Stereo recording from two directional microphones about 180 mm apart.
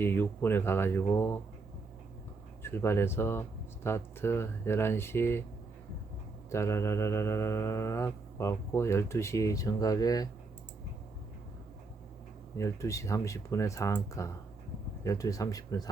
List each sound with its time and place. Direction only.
0.0 s mantra: 10° left (ahead or behind)
2.6 s mantra: 15° left (ahead or behind)
6.5 s mantra: 15° left (ahead or behind)
12.5 s mantra: 15° left (ahead or behind)
15.0 s speech: 20° left (ahead or behind)